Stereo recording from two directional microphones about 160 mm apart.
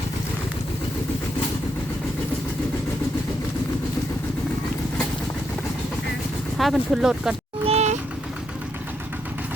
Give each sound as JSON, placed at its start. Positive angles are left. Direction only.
{"t": 6.6, "sound": "speech", "side_deg": 0}
{"t": 7.6, "sound": "vehicle", "side_deg": -40}